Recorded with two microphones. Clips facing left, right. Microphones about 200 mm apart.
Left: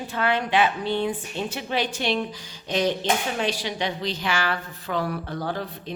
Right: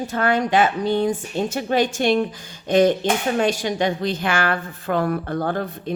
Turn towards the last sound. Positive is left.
turn(degrees=-50)  # may be behind; listen again after turning